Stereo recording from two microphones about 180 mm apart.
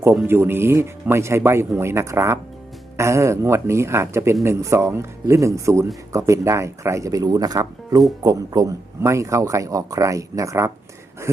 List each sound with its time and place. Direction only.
0.0 s speech: 10° right (ahead or behind)